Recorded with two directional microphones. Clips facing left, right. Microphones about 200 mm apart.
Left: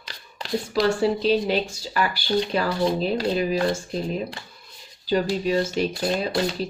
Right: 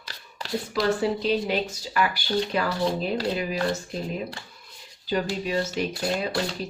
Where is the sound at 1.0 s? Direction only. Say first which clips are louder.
Left 4 dB; 30° left (ahead or behind).